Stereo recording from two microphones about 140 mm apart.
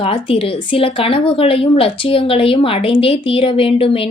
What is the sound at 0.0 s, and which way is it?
Speech, 40° left (ahead or behind).